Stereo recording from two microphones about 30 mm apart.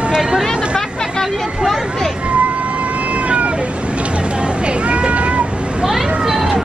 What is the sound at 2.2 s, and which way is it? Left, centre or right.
Cat, right.